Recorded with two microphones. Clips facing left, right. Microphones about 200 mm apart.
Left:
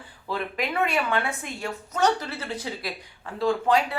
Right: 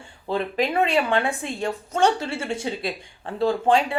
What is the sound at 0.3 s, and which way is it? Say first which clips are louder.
A woman's voice: right 5 dB; 30° right (ahead or behind).